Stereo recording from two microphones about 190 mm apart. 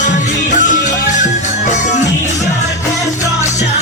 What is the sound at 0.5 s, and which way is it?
Music, 40° left (ahead or behind).